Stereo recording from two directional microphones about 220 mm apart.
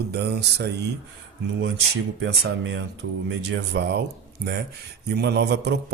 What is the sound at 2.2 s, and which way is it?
A man's voice, 55° right (ahead or behind).